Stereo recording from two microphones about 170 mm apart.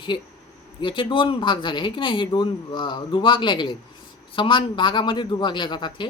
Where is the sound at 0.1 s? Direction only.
30° left (ahead or behind).